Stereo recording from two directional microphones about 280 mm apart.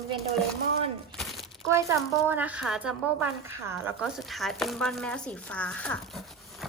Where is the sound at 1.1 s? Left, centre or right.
Centre.